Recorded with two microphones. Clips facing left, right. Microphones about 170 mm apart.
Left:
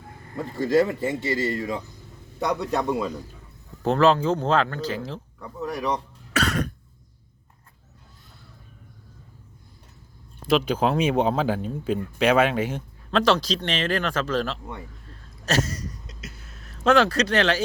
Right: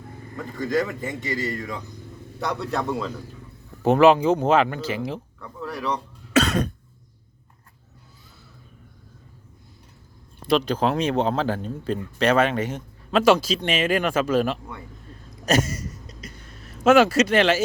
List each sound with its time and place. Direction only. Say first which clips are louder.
0.3 s speech: left 4 dB; 30° left (ahead or behind)
3.8 s speech: right 4 dB; 10° right (ahead or behind)
5.4 s a sound: left 2 dB; 15° left (ahead or behind)
6.3 s cough: right 5 dB; 20° right (ahead or behind)
10.4 s speech: even; 5° left (ahead or behind)
13.1 s speech: right 3 dB; 10° right (ahead or behind)
15.4 s a sound: right 3 dB; 10° right (ahead or behind)
16.0 s music: right 1 dB; 5° left (ahead or behind)
16.7 s speech: right 3 dB; 10° right (ahead or behind)